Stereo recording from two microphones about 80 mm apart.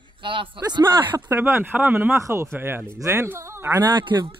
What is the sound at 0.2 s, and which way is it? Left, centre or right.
Speech, right.